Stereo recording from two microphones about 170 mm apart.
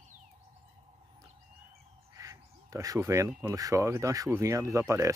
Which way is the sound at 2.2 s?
20° right (ahead or behind).